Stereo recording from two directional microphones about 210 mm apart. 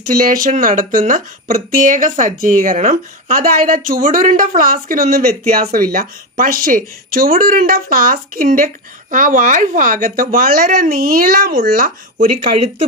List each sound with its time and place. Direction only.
0.1 s speech: 40° right (ahead or behind)